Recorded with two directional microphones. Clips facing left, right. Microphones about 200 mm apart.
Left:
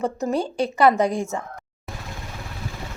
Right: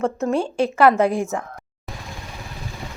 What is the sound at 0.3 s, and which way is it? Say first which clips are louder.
Speech: right 2 dB; 35° left (ahead or behind).